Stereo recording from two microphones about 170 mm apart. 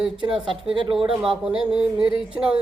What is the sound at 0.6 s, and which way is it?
Speech, 30° right (ahead or behind).